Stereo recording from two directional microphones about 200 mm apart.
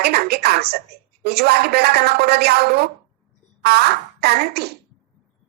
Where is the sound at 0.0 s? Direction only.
55° right (ahead or behind).